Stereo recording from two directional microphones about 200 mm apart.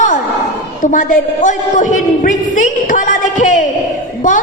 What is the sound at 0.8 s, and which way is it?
Music, 40° left (ahead or behind).